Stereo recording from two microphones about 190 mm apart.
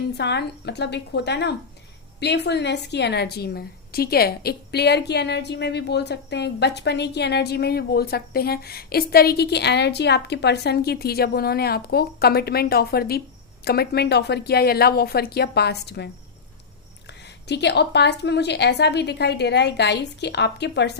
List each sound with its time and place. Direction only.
0.2 s a woman's voice: 60° left (ahead or behind)
17.5 s a woman's voice: 65° left (ahead or behind)